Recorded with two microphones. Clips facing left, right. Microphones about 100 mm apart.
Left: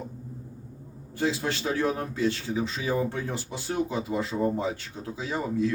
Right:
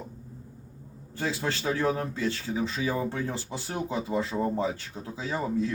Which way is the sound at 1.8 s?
25° right (ahead or behind).